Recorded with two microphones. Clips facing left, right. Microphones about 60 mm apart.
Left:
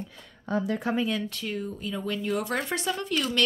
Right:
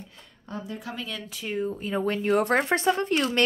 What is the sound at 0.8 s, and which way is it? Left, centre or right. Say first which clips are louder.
Speech: left 9 dB; left.